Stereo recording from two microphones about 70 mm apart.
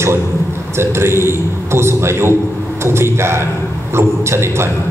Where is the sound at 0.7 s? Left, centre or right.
Right.